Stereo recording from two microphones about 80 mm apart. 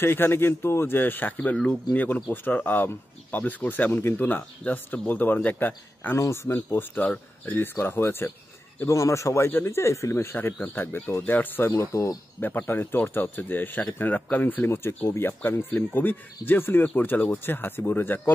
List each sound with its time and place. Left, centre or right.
0.0 s speech: left
10.3 s speech: left
11.7 s speech: left
12.4 s speech: left